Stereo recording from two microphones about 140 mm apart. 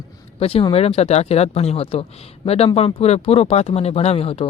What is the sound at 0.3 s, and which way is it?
Speech, 45° left (ahead or behind).